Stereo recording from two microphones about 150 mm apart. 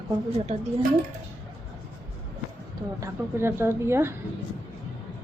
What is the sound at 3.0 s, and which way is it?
A woman's voice, 15° right (ahead or behind).